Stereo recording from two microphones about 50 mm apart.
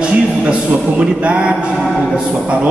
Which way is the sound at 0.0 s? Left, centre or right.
Right.